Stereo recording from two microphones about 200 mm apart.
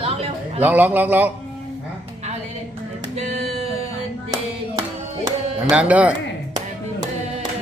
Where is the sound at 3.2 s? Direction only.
35° right (ahead or behind).